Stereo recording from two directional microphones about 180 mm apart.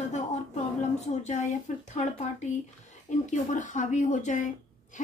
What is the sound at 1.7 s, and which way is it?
Speech, 40° left (ahead or behind).